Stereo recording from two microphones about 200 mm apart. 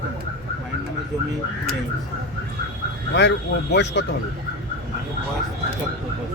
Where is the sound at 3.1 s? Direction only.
60° left (ahead or behind).